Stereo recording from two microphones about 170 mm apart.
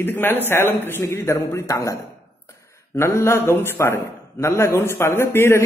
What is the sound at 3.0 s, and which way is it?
A man's voice, 15° left (ahead or behind).